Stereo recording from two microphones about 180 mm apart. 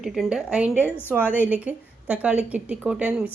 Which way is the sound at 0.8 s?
10° left (ahead or behind).